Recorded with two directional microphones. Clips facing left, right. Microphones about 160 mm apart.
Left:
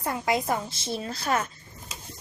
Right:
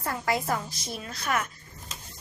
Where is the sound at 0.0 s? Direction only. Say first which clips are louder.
Left 2 dB; 20° left (ahead or behind).